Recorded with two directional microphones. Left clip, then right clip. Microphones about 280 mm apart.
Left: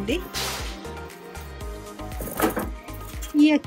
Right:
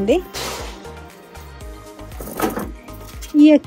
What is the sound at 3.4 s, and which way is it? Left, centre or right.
Music, centre.